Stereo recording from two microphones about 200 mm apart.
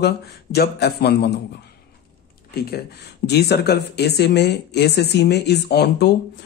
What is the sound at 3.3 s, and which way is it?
Speech, 55° left (ahead or behind).